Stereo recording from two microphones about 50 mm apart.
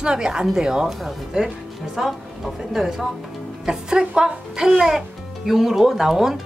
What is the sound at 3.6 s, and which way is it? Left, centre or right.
Speech, centre.